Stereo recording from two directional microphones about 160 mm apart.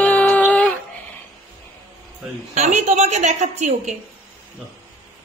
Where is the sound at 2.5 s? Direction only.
45° right (ahead or behind).